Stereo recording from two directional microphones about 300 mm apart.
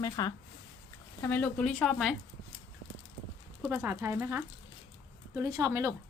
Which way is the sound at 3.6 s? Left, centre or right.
Centre.